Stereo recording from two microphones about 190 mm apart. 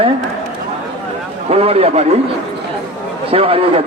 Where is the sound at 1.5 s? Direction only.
35° right (ahead or behind).